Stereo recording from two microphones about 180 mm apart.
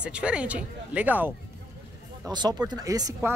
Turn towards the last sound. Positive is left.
turn(degrees=-15)  # may be behind; listen again after turning